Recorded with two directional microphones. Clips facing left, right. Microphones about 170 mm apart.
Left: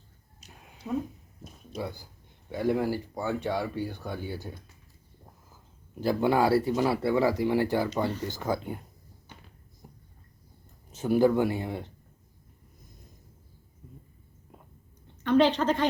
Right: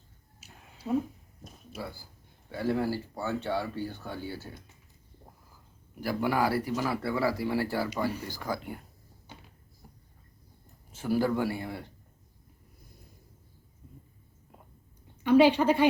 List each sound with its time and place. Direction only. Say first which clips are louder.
0.4 s a sound: left 1 dB; 5° right (ahead or behind)
0.9 s speech: right 2 dB; 20° right (ahead or behind)
1.8 s speech: left 4 dB; 20° left (ahead or behind)
5.9 s speech: left 4 dB; 25° left (ahead or behind)
9.8 s a sound: left 4 dB; 20° left (ahead or behind)
10.9 s speech: left 5 dB; 20° left (ahead or behind)
15.2 s a woman's voice: right 2 dB; 10° right (ahead or behind)